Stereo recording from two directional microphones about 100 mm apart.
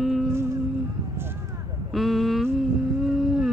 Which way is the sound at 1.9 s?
Centre (ahead or behind).